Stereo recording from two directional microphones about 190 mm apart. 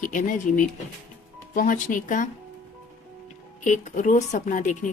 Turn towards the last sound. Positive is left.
turn(degrees=40)  # may be behind; listen again after turning